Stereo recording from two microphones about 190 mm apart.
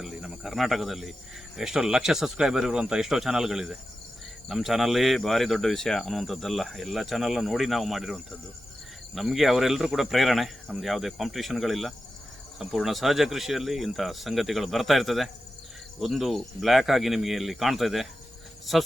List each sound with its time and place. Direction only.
0.0 s speech: centre (ahead or behind)